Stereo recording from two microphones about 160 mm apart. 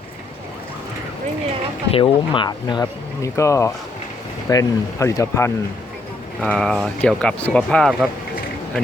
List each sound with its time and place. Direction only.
1.9 s speech: 35° left (ahead or behind)
6.4 s speech: 5° left (ahead or behind)